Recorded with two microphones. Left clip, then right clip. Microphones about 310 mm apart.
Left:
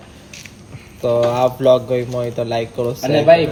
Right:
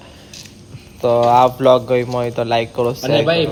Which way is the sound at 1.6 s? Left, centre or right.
Right.